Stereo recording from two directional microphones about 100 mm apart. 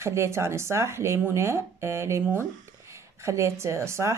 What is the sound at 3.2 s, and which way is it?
Speech, 30° right (ahead or behind).